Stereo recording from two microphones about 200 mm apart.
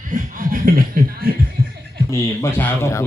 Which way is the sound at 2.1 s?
10° left (ahead or behind).